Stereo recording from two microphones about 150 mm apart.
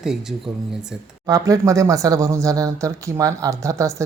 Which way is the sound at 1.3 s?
20° right (ahead or behind).